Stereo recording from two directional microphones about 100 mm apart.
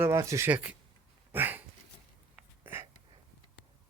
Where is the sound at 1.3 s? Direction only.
20° right (ahead or behind).